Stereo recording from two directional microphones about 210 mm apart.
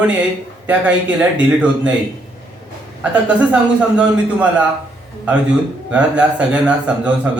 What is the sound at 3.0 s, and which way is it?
A man's voice, 5° right (ahead or behind).